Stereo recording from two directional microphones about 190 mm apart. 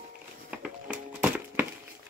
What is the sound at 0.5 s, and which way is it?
Music, 5° right (ahead or behind).